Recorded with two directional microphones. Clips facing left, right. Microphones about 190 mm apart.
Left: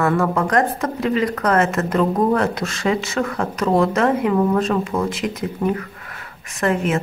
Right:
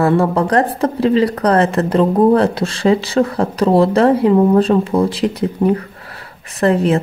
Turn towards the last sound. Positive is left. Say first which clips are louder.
# right 6 dB
turn(degrees=-35)  # may be behind; listen again after turning